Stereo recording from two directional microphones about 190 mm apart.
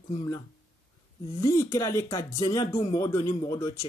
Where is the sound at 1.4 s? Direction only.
15° left (ahead or behind).